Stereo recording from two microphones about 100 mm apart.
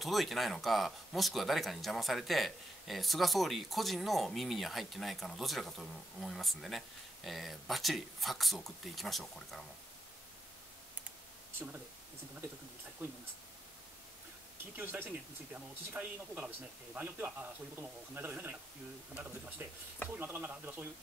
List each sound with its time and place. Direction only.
0.0 s speech: centre (ahead or behind)
14.8 s speech: 20° right (ahead or behind)
20.1 s speech: 20° right (ahead or behind)